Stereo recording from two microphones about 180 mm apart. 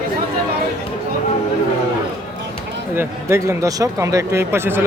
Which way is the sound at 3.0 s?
15° right (ahead or behind).